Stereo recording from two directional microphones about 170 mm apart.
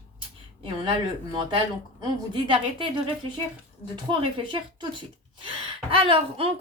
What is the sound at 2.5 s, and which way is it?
Speech, 30° right (ahead or behind).